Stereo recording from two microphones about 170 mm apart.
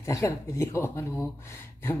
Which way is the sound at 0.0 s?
20° left (ahead or behind).